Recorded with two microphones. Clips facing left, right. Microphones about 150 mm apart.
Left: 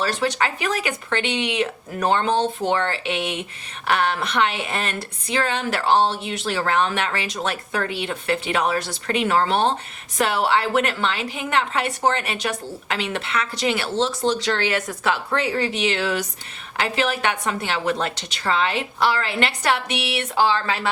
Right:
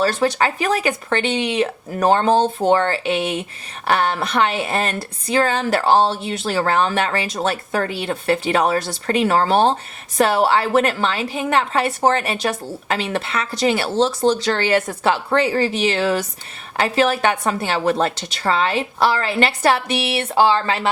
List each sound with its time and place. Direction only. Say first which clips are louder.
0.0 s a woman's voice: right 5 dB; 40° right (ahead or behind)